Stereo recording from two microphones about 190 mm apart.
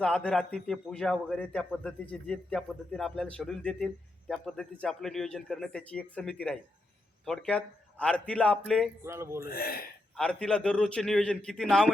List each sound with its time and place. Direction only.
0.0 s speech: 5° left (ahead or behind)
9.0 s speech: 15° right (ahead or behind)
9.5 s speech: 50° left (ahead or behind)
10.2 s speech: 5° left (ahead or behind)